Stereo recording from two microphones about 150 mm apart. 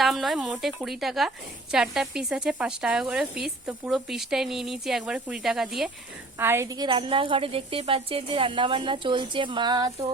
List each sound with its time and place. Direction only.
0.0 s speech: centre (ahead or behind)
6.4 s a woman's voice: 15° right (ahead or behind)